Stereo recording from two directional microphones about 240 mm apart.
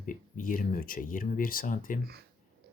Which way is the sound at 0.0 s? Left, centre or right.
Left.